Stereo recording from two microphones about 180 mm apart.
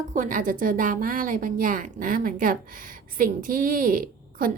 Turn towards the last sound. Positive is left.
turn(degrees=-50)  # may be behind; listen again after turning